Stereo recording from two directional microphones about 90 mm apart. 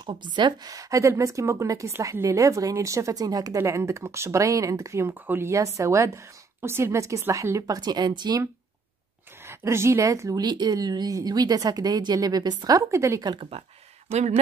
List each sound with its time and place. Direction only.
0.0 s a woman's voice: 60° right (ahead or behind)
0.7 s a woman's voice: 40° right (ahead or behind)
5.2 s speech: 20° right (ahead or behind)
5.5 s a woman's voice: 35° right (ahead or behind); by 8.4 s 50° right (ahead or behind)
9.5 s a woman's voice: 30° right (ahead or behind)
10.4 s speech: 50° right (ahead or behind); by 13.2 s 35° right (ahead or behind)
13.4 s speech: 90° right